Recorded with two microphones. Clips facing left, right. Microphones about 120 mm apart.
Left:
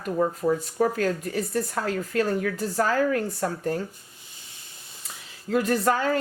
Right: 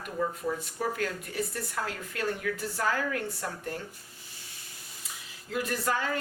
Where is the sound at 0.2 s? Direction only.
45° left (ahead or behind).